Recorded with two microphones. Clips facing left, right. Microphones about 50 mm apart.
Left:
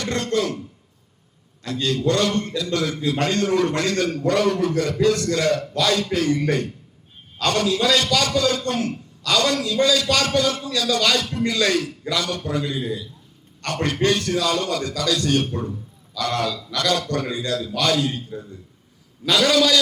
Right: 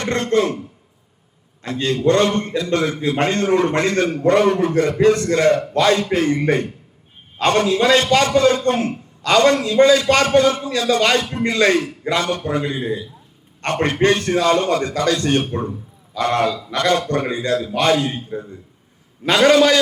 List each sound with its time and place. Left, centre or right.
0.0 s a man's voice: right
1.6 s a man's voice: right